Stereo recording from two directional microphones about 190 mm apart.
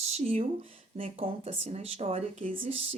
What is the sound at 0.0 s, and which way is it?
Speech, 35° right (ahead or behind).